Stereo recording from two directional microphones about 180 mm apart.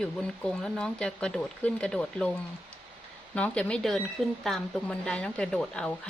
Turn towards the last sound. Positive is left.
turn(degrees=5)  # may be behind; listen again after turning